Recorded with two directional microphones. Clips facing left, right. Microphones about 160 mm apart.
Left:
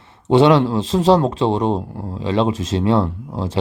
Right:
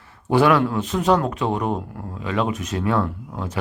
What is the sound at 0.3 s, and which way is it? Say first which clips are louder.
A man's voice: left 4 dB; 25° left (ahead or behind).